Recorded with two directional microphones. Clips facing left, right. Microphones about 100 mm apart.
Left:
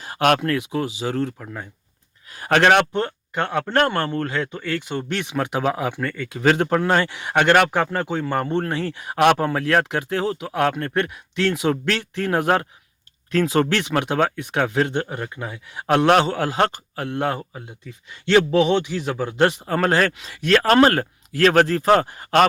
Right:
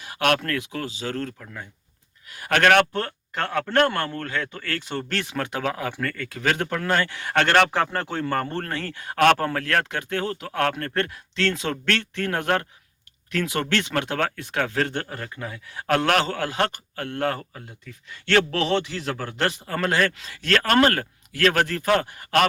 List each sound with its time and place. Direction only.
0.0 s a sound: 30° left (ahead or behind)
0.4 s speech: 20° left (ahead or behind)
7.3 s speech: 10° left (ahead or behind)
8.7 s speech: 25° left (ahead or behind)
10.4 s speech: 10° left (ahead or behind)
13.3 s speech: 30° left (ahead or behind)
19.8 s speech: 35° left (ahead or behind)
20.1 s speech: 20° left (ahead or behind)